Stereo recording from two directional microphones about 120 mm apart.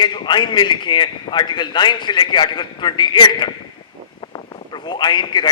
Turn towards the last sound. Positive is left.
turn(degrees=40)  # may be behind; listen again after turning